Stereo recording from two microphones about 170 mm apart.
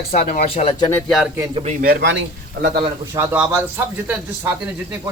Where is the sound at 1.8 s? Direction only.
70° right (ahead or behind).